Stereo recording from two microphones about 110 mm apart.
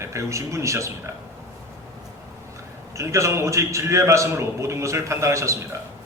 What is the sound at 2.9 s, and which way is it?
A man's voice, 25° right (ahead or behind).